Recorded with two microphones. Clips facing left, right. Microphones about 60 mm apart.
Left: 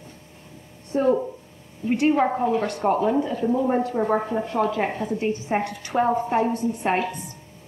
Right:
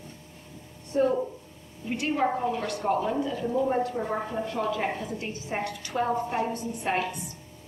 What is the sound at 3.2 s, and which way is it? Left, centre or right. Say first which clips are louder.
Speech: left 5 dB; left.